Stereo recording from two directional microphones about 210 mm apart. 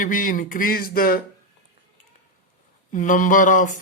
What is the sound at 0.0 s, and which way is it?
Speech, 40° left (ahead or behind).